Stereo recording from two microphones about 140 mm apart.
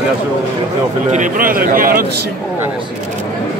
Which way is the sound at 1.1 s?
75° right (ahead or behind).